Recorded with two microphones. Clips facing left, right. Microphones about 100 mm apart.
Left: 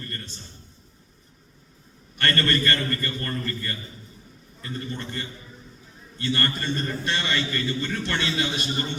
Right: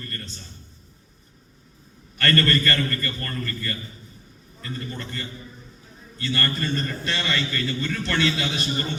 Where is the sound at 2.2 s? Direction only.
20° left (ahead or behind).